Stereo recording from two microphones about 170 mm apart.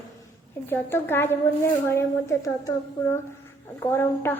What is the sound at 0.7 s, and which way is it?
A woman's voice, 15° left (ahead or behind).